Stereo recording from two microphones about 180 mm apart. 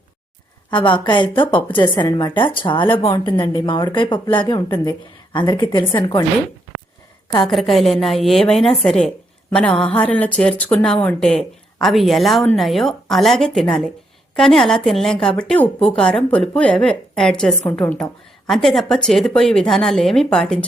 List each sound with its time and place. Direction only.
0.7 s speech: 25° left (ahead or behind)
7.4 s a woman's voice: centre (ahead or behind)
9.9 s a sound: 10° left (ahead or behind)
10.7 s a woman's voice: 5° left (ahead or behind)